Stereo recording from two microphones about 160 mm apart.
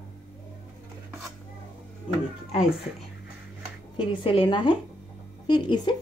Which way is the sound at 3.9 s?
30° left (ahead or behind).